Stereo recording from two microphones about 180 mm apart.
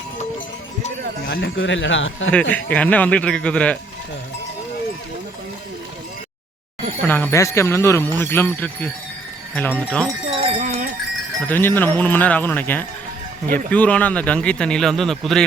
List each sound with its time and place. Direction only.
1.3 s a man's voice: 65° left (ahead or behind); by 2.3 s 90° left
2.3 s speech: 10° left (ahead or behind)
7.1 s speech: 10° left (ahead or behind)
10.2 s cowbell: 30° right (ahead or behind)
11.4 s speech: 10° left (ahead or behind)